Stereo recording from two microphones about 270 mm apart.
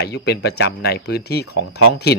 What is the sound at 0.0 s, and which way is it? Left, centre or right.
Speech, left.